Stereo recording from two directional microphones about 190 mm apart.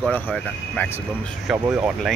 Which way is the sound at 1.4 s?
5° right (ahead or behind).